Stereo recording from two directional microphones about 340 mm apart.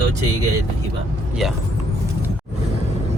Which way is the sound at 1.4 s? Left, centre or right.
Centre.